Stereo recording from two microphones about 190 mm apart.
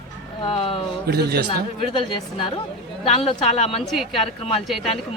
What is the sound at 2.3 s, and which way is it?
Speech, 30° left (ahead or behind).